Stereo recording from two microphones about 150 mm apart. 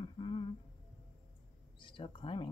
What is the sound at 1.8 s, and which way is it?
Speech, 35° left (ahead or behind).